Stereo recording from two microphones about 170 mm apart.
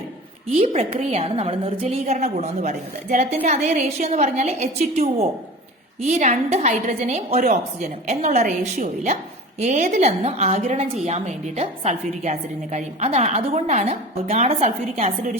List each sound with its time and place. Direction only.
0.5 s a woman's voice: 35° right (ahead or behind)